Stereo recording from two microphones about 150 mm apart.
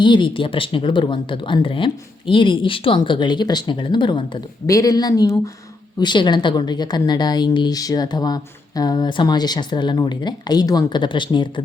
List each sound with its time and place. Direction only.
0.0 s a woman's voice: 30° left (ahead or behind)